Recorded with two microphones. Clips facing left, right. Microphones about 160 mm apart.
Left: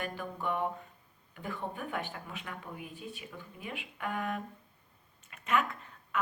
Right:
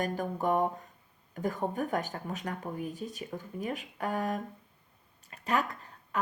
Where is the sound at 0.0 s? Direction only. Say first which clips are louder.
Right 6 dB; 40° right (ahead or behind).